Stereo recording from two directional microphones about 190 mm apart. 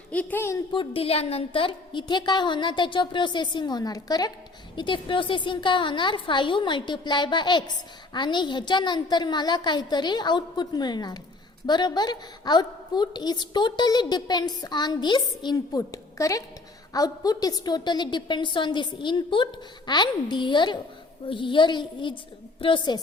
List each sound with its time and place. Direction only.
0.1 s speech: 10° left (ahead or behind)
0.7 s a woman's voice: 30° left (ahead or behind)